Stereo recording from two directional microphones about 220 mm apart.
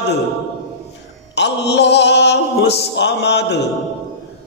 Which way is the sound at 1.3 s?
50° left (ahead or behind).